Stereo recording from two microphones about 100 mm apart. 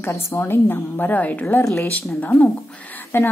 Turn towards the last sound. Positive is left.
turn(degrees=25)  # may be behind; listen again after turning